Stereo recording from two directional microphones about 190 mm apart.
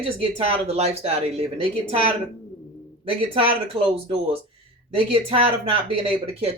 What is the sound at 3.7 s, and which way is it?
Speech, 25° right (ahead or behind).